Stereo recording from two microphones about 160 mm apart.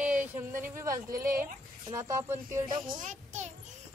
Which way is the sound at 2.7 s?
30° right (ahead or behind).